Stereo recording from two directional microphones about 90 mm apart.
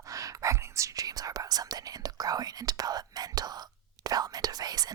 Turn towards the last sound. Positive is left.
turn(degrees=-45)  # may be behind; listen again after turning